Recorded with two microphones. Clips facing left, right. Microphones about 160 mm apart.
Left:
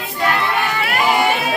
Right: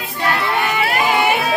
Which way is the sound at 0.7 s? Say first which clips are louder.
Even; 20° right (ahead or behind).